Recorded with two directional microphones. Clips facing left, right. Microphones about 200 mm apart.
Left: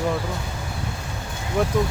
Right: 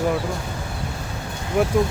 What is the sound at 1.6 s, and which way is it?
Speech, 10° right (ahead or behind).